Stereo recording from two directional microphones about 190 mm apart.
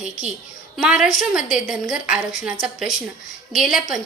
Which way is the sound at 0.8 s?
5° right (ahead or behind).